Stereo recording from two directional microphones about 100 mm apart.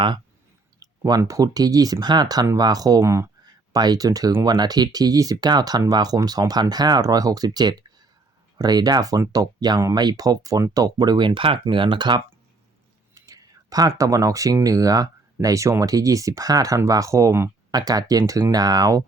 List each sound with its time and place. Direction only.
0.8 s a sound: 40° right (ahead or behind)
1.2 s speech: 35° right (ahead or behind)
3.0 s speech: 25° right (ahead or behind)
3.7 s speech: 40° right (ahead or behind)
13.1 s speech: 35° right (ahead or behind)